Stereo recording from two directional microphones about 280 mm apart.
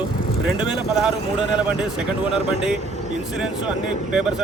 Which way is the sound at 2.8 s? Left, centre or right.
Right.